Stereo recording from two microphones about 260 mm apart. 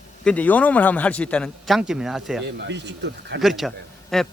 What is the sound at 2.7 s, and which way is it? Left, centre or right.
Speech, right.